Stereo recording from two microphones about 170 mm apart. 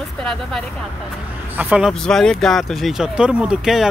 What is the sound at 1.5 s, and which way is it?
Speech, 10° right (ahead or behind).